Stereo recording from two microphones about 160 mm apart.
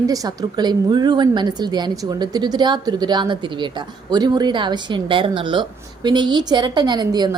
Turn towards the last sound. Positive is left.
turn(degrees=-25)  # may be behind; listen again after turning